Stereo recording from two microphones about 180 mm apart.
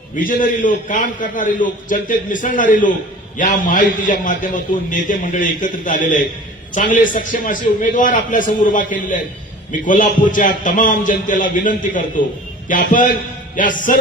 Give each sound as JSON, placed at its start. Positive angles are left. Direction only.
{"t": 0.2, "sound": "a man's voice", "side_deg": 50}